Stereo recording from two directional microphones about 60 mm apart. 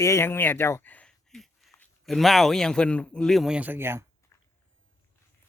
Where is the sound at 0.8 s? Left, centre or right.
Left.